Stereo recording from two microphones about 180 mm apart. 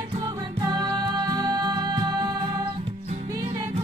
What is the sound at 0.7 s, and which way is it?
Music, 25° right (ahead or behind).